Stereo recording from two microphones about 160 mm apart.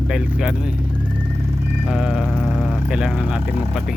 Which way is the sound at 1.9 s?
5° right (ahead or behind).